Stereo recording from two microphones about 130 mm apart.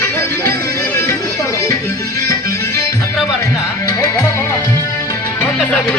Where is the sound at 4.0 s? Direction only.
25° left (ahead or behind).